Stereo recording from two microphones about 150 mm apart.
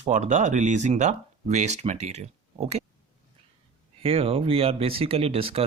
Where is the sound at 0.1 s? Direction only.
55° right (ahead or behind).